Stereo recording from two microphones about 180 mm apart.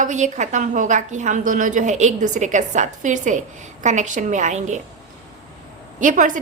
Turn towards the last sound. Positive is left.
turn(degrees=-45)  # may be behind; listen again after turning